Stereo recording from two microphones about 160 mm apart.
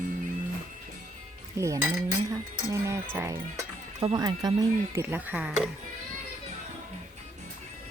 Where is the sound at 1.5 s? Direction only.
20° right (ahead or behind).